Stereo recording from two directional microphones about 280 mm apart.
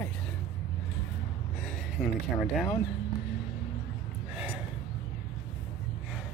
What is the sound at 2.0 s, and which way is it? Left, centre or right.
Speech, centre.